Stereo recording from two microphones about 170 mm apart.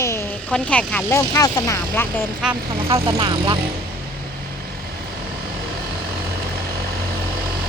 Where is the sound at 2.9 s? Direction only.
30° right (ahead or behind).